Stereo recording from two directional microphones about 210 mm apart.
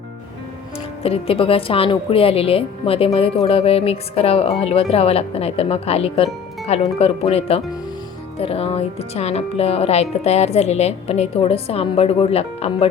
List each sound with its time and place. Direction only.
1.0 s a woman's voice: 25° left (ahead or behind)